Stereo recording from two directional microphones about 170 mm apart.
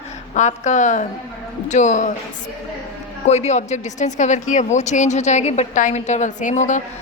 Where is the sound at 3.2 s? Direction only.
40° left (ahead or behind).